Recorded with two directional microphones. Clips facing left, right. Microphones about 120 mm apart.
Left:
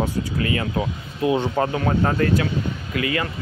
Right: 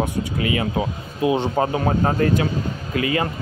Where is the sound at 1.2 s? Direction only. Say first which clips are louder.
Right 1 dB; 20° right (ahead or behind).